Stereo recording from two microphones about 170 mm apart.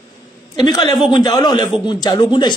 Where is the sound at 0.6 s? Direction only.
20° left (ahead or behind).